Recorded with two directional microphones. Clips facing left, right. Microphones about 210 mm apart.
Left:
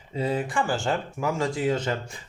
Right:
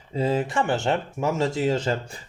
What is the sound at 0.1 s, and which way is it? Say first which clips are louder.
Speech: right 3 dB; 25° right (ahead or behind).